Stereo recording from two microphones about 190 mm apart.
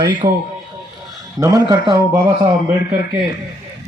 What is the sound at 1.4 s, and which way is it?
Speech, 15° right (ahead or behind).